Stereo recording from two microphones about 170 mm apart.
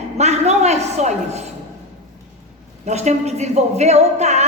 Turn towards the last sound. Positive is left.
turn(degrees=-40)  # may be behind; listen again after turning